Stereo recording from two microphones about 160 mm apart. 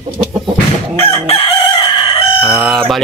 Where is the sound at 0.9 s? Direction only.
35° left (ahead or behind).